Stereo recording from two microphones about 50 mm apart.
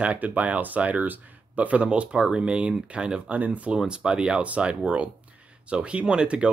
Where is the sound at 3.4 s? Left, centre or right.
Right.